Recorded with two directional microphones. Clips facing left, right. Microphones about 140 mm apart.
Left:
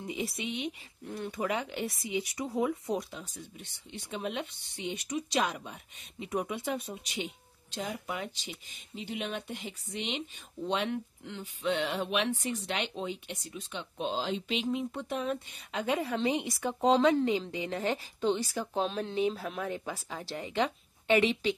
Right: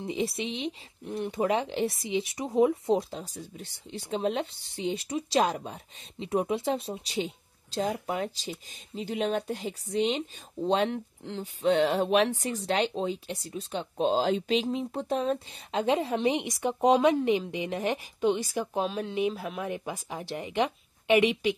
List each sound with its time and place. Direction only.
0.0 s speech: 25° right (ahead or behind)